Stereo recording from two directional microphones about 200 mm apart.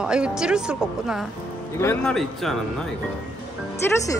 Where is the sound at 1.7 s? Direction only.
10° left (ahead or behind).